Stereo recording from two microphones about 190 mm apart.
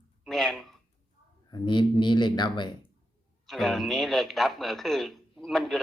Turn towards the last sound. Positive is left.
turn(degrees=0)  # may be behind; listen again after turning